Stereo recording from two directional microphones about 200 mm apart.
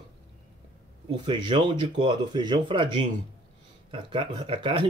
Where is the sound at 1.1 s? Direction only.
25° right (ahead or behind).